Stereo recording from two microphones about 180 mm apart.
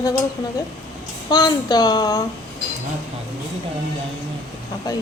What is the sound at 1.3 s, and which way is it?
Speech, 20° left (ahead or behind).